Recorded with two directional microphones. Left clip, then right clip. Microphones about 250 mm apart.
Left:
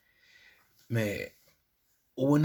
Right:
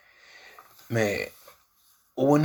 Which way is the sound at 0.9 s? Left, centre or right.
Left.